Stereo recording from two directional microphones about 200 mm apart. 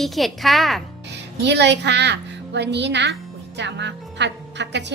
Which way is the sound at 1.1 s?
60° right (ahead or behind).